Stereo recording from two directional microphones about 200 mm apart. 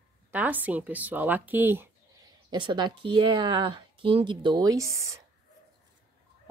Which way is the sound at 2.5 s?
20° right (ahead or behind).